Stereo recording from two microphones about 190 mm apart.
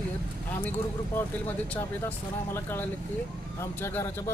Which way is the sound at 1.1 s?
10° left (ahead or behind).